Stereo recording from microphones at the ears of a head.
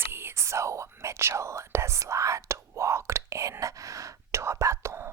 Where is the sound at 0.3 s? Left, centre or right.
Right.